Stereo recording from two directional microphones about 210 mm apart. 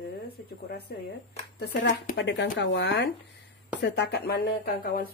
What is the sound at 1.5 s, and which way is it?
Speech, 50° left (ahead or behind).